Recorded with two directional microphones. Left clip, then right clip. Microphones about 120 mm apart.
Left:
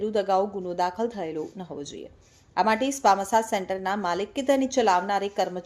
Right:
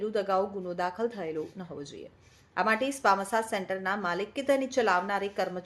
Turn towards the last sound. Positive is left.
turn(degrees=35)  # may be behind; listen again after turning